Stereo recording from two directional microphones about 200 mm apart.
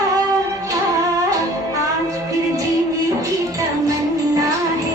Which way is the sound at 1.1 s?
15° right (ahead or behind).